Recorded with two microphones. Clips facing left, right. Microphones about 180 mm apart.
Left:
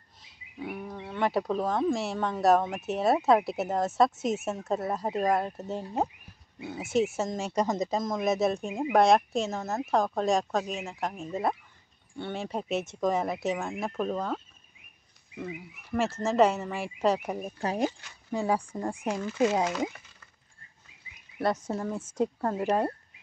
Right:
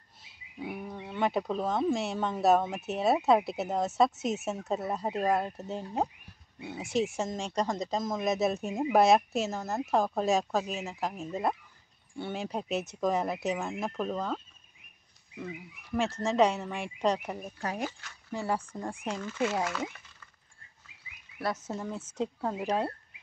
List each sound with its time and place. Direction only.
0.6 s wild animals: 5° right (ahead or behind)
1.3 s speech: centre (ahead or behind)
17.4 s speech: 25° left (ahead or behind)
21.4 s speech: 20° left (ahead or behind)
22.4 s speech: centre (ahead or behind)